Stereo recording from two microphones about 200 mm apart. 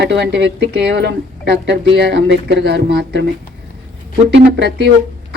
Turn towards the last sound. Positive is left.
turn(degrees=-55)  # may be behind; listen again after turning